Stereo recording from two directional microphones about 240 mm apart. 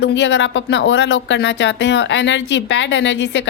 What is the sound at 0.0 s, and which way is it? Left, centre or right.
A woman's voice, left.